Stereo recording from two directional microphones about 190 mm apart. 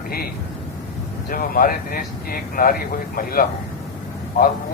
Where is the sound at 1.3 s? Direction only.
50° left (ahead or behind).